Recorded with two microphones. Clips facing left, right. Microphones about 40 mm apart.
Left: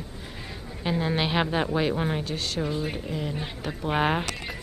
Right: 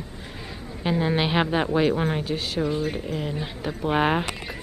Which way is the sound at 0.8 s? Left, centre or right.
Centre.